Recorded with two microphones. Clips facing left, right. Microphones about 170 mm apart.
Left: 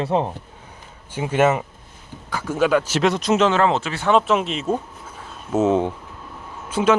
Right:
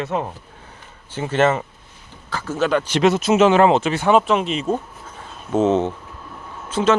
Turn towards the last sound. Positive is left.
turn(degrees=10)  # may be behind; listen again after turning